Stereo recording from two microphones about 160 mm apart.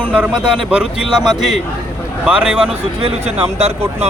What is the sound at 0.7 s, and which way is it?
Speech, 5° right (ahead or behind).